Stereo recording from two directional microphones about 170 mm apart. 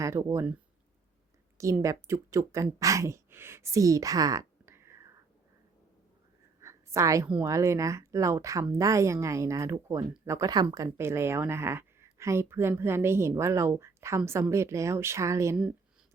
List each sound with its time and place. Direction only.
0.0 s speech: 15° right (ahead or behind)
1.5 s speech: 20° right (ahead or behind)
6.6 s a sound: 15° right (ahead or behind)
7.4 s speech: 15° right (ahead or behind)